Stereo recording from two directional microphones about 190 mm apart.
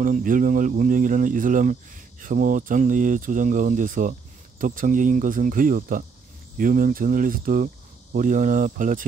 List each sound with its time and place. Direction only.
0.0 s speech: 45° right (ahead or behind)